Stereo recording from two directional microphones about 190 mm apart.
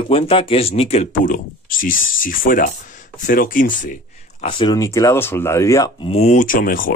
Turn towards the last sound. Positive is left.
turn(degrees=45)  # may be behind; listen again after turning